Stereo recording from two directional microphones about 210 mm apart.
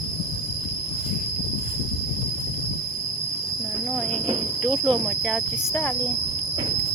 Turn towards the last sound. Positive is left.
turn(degrees=10)  # may be behind; listen again after turning